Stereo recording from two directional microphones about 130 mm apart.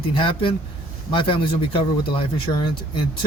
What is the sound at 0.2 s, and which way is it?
Speech, 45° left (ahead or behind).